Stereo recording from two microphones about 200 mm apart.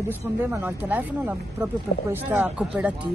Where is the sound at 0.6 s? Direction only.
10° right (ahead or behind).